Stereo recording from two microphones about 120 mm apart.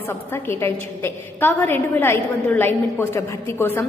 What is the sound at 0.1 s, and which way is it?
A woman's voice, 20° left (ahead or behind).